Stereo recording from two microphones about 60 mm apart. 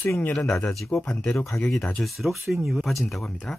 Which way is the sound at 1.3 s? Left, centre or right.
Left.